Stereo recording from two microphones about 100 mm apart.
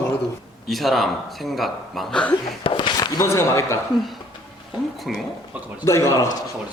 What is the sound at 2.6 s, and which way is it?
Speech, 60° left (ahead or behind).